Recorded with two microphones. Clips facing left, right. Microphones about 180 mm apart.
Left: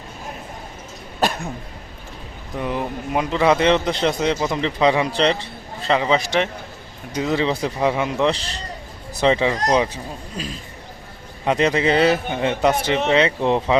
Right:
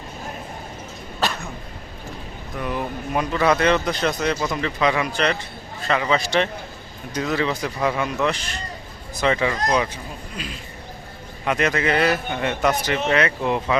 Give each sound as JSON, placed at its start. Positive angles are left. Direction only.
{"t": 2.6, "sound": "speech", "side_deg": 20}
{"t": 10.3, "sound": "speech", "side_deg": 40}
{"t": 11.4, "sound": "speech", "side_deg": 25}